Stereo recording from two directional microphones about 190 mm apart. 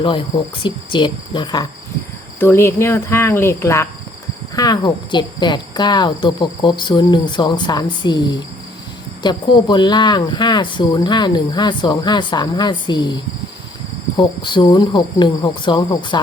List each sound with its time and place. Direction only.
0.0 s speech: 25° left (ahead or behind)
2.4 s cricket: 10° left (ahead or behind)
4.5 s speech: 20° left (ahead or behind)
14.2 s speech: 25° left (ahead or behind)